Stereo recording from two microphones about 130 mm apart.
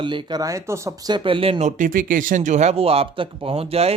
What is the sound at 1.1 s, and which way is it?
Speech, 40° right (ahead or behind).